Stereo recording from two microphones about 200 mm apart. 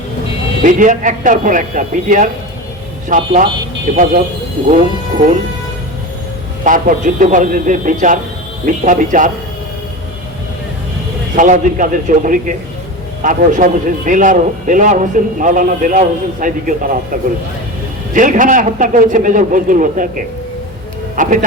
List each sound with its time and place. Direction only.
0.6 s a man's voice: 40° right (ahead or behind)
6.7 s a man's voice: 40° right (ahead or behind)
11.3 s a man's voice: 40° right (ahead or behind)
21.2 s a man's voice: 40° right (ahead or behind)